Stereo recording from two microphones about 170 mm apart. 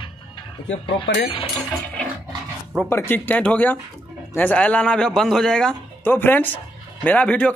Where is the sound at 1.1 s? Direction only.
90° left.